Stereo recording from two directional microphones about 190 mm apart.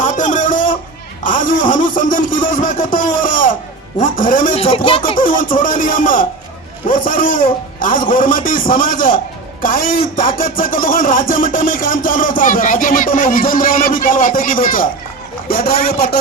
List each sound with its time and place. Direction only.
0.0 s a sound: 40° left (ahead or behind)
4.0 s a man's voice: 45° left (ahead or behind)
4.5 s speech: 30° left (ahead or behind)
5.1 s a man's voice: 45° left (ahead or behind)